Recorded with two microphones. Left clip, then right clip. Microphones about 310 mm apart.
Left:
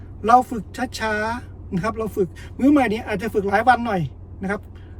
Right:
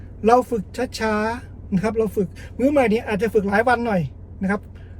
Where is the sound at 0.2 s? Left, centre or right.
Centre.